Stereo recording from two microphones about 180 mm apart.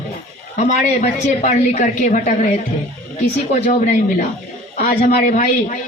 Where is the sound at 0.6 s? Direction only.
40° left (ahead or behind).